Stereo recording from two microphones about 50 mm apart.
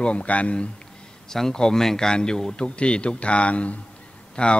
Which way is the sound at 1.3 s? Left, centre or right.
Centre.